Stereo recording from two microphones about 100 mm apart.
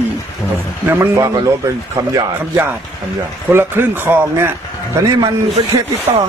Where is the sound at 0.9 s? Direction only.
30° right (ahead or behind).